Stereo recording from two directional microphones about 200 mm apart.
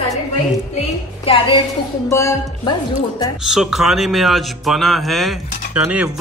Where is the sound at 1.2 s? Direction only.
30° left (ahead or behind).